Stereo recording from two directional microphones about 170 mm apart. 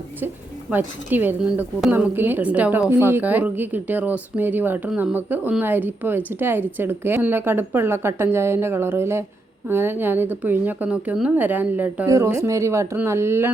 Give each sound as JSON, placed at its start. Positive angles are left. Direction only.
{"t": 0.7, "sound": "a woman's voice", "side_deg": -10}